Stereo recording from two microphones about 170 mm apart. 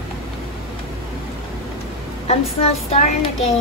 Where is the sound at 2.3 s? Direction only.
35° left (ahead or behind).